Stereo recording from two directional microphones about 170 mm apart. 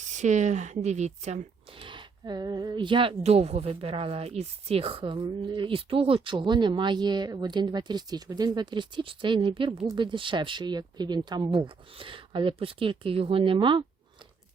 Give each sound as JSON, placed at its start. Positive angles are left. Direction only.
{"t": 0.0, "sound": "speech", "side_deg": -45}